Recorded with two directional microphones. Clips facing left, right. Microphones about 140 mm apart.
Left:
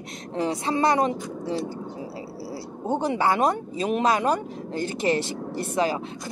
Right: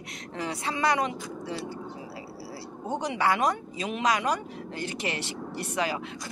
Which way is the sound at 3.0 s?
40° left (ahead or behind).